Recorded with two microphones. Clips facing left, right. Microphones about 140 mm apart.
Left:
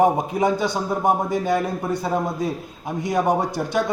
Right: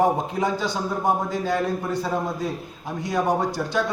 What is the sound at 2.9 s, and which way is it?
Speech, 15° left (ahead or behind).